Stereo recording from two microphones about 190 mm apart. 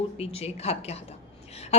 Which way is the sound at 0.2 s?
30° left (ahead or behind).